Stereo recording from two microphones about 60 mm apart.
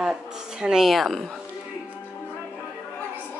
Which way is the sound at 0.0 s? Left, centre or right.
Centre.